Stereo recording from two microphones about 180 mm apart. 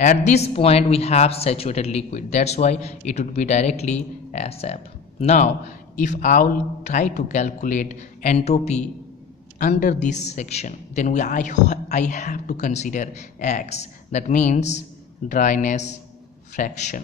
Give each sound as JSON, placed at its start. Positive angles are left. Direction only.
{"t": 0.0, "sound": "a woman's voice", "side_deg": 40}